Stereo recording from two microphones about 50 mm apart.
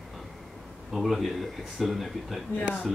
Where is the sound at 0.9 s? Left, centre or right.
Centre.